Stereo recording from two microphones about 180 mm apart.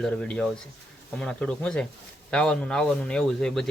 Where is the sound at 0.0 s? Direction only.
5° left (ahead or behind).